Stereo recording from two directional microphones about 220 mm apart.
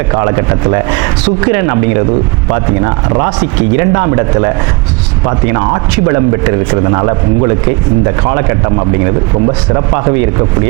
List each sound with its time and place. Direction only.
0.2 s speech: 20° right (ahead or behind)
8.3 s speech: 25° right (ahead or behind)